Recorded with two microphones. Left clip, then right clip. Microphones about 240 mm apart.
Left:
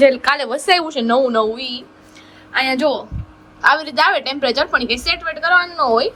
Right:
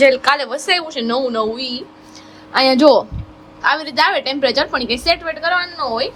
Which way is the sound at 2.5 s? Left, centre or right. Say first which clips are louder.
Right 6 dB; right.